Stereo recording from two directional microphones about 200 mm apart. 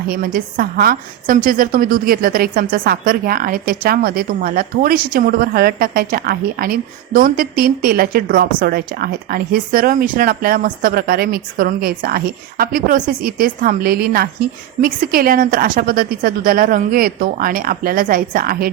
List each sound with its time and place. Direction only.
0.1 s a woman's voice: 45° right (ahead or behind)